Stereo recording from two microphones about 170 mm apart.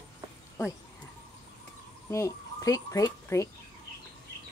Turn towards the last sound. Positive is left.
turn(degrees=20)  # may be behind; listen again after turning